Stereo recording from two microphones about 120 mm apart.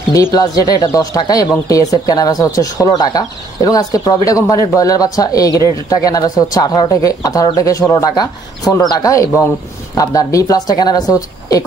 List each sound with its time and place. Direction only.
0.1 s speech: 30° left (ahead or behind)